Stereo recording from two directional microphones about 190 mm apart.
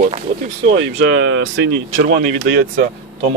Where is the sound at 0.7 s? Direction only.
75° right (ahead or behind).